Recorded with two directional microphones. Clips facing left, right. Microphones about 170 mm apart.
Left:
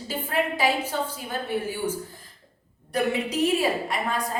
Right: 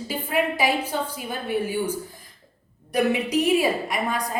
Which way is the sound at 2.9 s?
15° right (ahead or behind).